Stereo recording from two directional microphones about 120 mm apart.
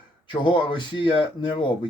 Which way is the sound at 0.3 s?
40° left (ahead or behind).